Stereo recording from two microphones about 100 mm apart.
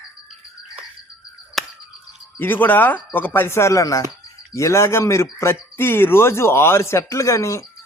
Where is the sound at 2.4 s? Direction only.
20° left (ahead or behind).